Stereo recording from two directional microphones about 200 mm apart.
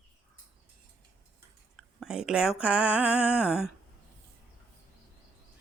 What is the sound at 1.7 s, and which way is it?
Speech, centre (ahead or behind).